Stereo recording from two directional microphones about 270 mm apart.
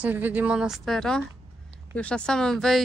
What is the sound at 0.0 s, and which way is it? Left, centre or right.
Speech, centre.